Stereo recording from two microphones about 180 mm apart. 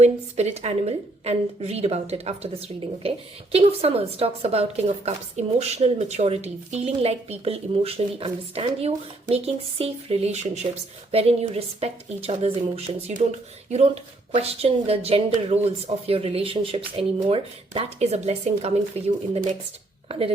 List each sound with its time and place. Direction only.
0.0 s speech: 40° right (ahead or behind)